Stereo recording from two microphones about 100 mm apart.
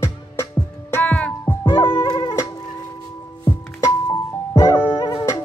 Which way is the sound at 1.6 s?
50° left (ahead or behind).